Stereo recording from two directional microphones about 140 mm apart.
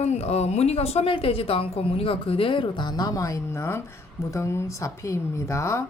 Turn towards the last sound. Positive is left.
turn(degrees=20)  # may be behind; listen again after turning